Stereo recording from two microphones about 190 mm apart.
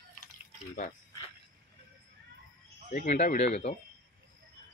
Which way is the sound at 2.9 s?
40° left (ahead or behind).